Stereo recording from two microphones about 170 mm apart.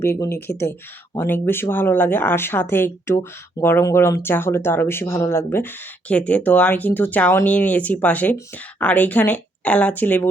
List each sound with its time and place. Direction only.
0.0 s speech: 15° left (ahead or behind)